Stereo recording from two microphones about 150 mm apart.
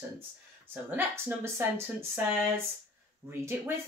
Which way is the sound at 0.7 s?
15° right (ahead or behind).